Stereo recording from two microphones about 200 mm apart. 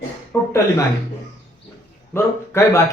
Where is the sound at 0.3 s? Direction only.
15° left (ahead or behind).